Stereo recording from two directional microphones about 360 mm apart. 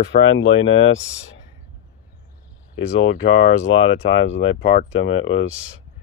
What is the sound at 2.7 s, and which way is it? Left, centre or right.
Speech, left.